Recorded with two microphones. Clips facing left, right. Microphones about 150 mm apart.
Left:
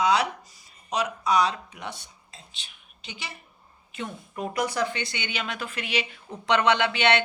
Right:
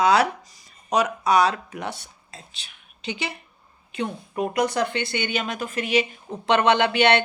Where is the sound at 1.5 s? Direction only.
90° right.